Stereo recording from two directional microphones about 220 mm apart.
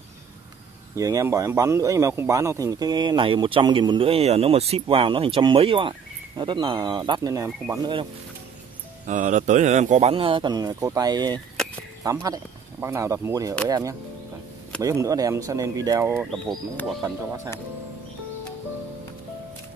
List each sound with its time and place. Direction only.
0.9 s a man's voice: 15° right (ahead or behind)
9.0 s a man's voice: 35° right (ahead or behind); by 16.3 s 10° right (ahead or behind)
16.3 s speech: centre (ahead or behind)